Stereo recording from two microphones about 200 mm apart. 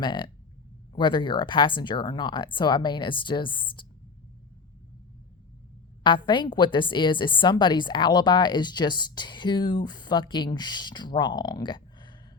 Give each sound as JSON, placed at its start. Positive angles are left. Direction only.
{"t": 0.0, "sound": "a woman's voice", "side_deg": 25}
{"t": 6.0, "sound": "a woman's voice", "side_deg": 25}